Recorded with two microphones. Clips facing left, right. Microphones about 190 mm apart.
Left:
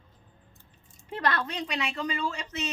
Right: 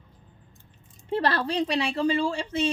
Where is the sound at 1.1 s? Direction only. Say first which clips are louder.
Right 5 dB; 30° right (ahead or behind).